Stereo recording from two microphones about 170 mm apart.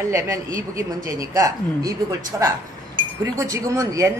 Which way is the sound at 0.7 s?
20° right (ahead or behind).